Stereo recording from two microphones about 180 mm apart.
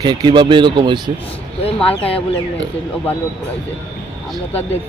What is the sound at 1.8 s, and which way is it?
Speech, 30° left (ahead or behind).